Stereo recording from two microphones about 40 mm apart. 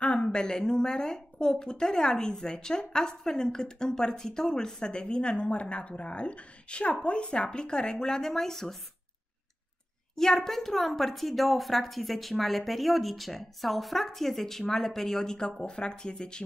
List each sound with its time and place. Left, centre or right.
0.0 s speech: left; by 8.7 s centre
10.1 s a woman's voice: centre